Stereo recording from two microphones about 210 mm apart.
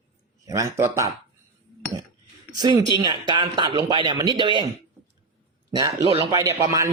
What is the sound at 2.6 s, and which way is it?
A man's voice, 20° right (ahead or behind).